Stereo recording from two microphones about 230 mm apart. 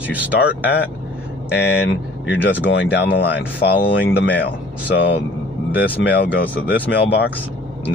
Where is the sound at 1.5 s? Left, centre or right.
Left.